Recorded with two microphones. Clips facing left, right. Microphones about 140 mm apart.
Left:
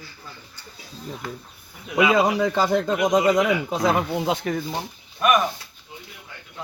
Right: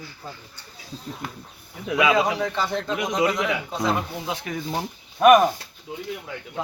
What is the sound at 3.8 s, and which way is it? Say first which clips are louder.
Speech: left 3 dB; 90° left.